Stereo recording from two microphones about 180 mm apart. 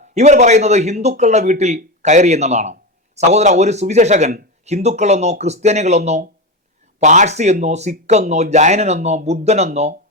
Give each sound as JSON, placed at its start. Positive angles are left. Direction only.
{"t": 0.1, "sound": "speech", "side_deg": -40}